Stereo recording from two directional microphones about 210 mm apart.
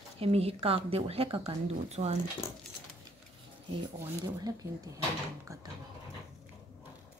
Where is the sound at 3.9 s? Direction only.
15° right (ahead or behind).